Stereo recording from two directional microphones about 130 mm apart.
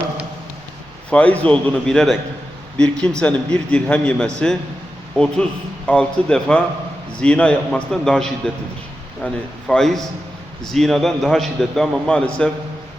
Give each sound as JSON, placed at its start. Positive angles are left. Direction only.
{"t": 1.1, "sound": "a man's voice", "side_deg": 10}